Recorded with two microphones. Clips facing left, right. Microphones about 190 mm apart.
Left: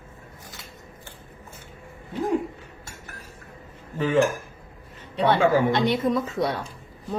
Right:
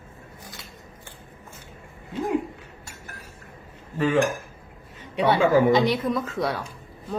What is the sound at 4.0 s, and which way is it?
A woman's voice, 10° right (ahead or behind).